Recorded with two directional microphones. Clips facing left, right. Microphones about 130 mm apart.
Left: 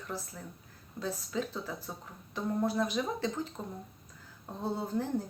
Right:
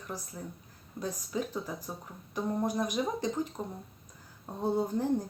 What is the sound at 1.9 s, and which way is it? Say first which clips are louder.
Speech: right 2 dB; 15° right (ahead or behind).